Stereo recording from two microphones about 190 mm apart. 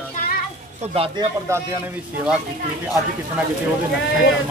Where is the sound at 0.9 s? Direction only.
30° right (ahead or behind).